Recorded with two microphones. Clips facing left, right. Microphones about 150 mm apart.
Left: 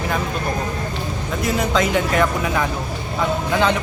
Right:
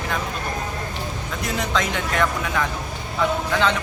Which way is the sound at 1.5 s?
5° left (ahead or behind).